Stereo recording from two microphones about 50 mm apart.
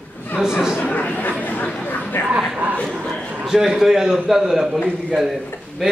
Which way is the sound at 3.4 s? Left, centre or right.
Centre.